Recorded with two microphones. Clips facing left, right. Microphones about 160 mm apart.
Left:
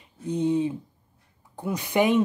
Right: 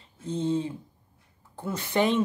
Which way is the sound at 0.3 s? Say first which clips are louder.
Left 4 dB; 15° left (ahead or behind).